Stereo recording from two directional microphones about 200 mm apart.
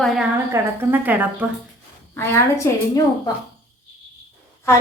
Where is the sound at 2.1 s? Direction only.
15° left (ahead or behind).